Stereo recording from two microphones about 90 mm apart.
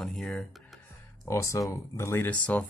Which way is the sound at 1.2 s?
35° left (ahead or behind).